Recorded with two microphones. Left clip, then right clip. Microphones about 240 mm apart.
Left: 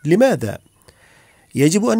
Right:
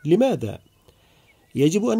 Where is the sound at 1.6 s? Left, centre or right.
Left.